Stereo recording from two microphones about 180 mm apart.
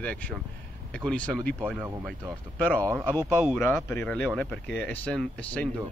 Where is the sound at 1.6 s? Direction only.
5° right (ahead or behind).